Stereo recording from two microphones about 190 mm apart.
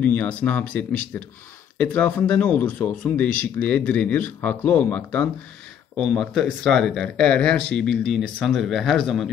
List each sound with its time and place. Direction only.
0.0 s speech: 5° left (ahead or behind)